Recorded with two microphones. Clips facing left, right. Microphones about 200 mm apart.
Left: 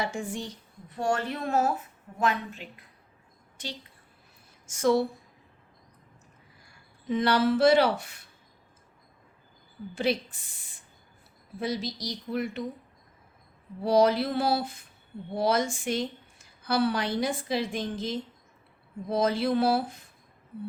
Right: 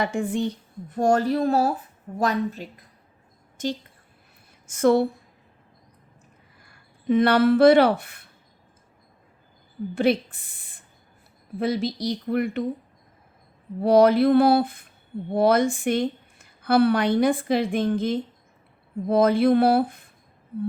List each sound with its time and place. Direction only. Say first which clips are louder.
0.0 s a woman's voice: right 8 dB; 60° right (ahead or behind)
4.6 s speech: right 5 dB; 60° right (ahead or behind)
7.1 s a woman's voice: right 6 dB; 60° right (ahead or behind)
9.9 s a woman's voice: right 6 dB; 55° right (ahead or behind)
13.8 s a woman's voice: right 6 dB; 55° right (ahead or behind)